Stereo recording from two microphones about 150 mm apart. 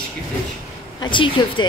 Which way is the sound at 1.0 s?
30° left (ahead or behind).